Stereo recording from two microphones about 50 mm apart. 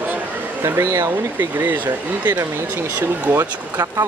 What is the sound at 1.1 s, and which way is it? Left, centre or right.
Speech, right.